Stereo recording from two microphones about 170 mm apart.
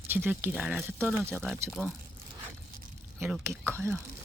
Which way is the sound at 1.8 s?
10° right (ahead or behind).